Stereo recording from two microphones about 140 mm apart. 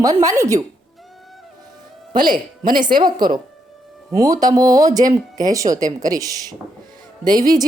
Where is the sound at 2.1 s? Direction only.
35° right (ahead or behind).